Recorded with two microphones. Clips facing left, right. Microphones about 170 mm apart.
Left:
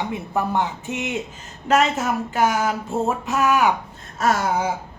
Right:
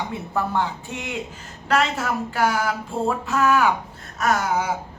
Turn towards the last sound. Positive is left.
turn(degrees=30)  # may be behind; listen again after turning